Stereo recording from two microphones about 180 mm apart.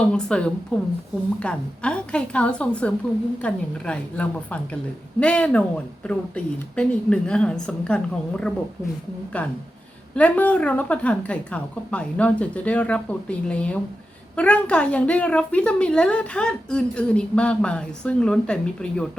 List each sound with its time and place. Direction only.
0.0 s a woman's voice: 5° left (ahead or behind)
10.2 s a woman's voice: 10° left (ahead or behind)